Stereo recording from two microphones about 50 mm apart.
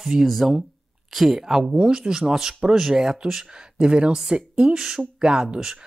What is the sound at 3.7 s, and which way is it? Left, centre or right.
Speech, centre.